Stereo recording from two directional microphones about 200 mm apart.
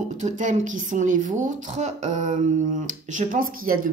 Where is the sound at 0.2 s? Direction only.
40° right (ahead or behind).